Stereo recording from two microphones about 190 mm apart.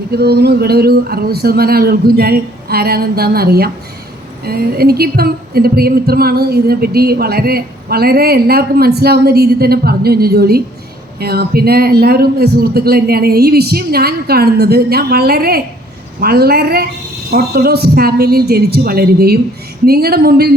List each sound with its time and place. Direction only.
0.1 s a man's voice: 55° right (ahead or behind)